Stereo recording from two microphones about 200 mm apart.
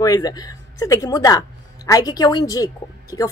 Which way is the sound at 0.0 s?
20° left (ahead or behind).